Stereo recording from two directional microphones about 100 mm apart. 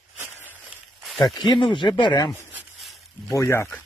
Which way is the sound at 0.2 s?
25° right (ahead or behind).